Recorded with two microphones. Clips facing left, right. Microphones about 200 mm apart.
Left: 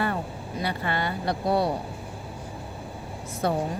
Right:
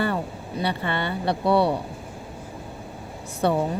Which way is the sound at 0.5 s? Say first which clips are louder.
Right 2 dB; 30° right (ahead or behind).